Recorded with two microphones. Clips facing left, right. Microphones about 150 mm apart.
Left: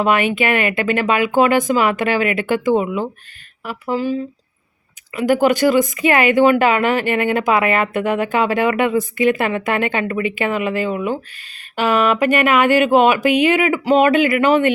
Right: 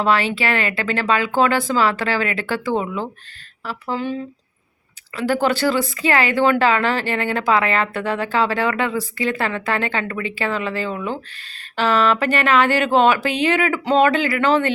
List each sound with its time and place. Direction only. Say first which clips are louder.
0.0 s speech: left 3 dB; 15° left (ahead or behind)